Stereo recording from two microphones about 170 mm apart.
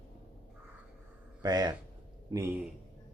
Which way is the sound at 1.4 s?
25° right (ahead or behind).